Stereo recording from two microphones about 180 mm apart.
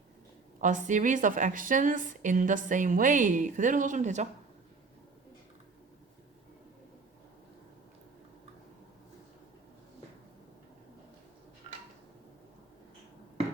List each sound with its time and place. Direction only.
0.6 s a woman's voice: 45° right (ahead or behind)